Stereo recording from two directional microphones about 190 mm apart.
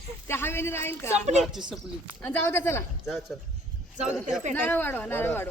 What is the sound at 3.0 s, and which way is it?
Speech, centre (ahead or behind).